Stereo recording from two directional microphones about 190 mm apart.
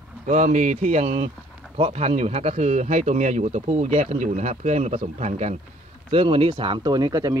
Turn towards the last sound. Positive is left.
turn(degrees=-20)  # may be behind; listen again after turning